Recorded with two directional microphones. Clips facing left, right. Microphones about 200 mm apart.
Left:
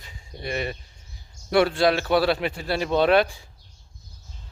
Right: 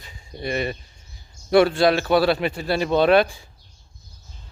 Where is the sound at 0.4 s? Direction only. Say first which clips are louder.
Right 3 dB; 30° right (ahead or behind); by 3.2 s 45° right (ahead or behind).